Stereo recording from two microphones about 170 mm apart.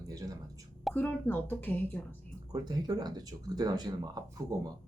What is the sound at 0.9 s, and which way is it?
Speech, 10° left (ahead or behind).